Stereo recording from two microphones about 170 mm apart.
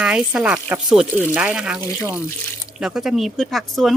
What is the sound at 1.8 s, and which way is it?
Speech, 20° left (ahead or behind).